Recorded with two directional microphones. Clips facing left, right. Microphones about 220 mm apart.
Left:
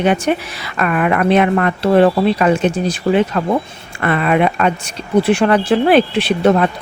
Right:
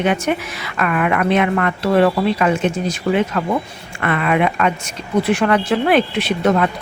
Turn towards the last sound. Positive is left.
turn(degrees=30)  # may be behind; listen again after turning